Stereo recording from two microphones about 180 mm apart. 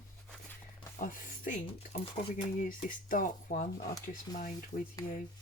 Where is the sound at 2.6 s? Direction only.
50° left (ahead or behind).